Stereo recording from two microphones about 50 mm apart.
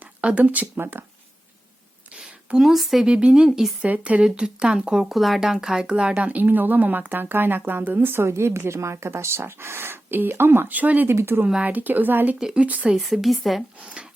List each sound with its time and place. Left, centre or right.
0.0 s speech: right
2.1 s speech: centre
3.1 s speech: right
3.8 s speech: right
4.2 s speech: centre
5.1 s speech: centre
6.2 s speech: right
10.7 s speech: right
11.1 s speech: right
11.6 s speech: right
13.1 s a woman's voice: centre